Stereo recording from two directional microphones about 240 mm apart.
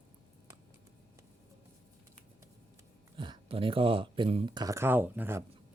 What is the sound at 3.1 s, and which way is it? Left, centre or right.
Speech, right.